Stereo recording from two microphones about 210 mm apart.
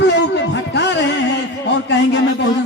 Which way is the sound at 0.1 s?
55° left (ahead or behind).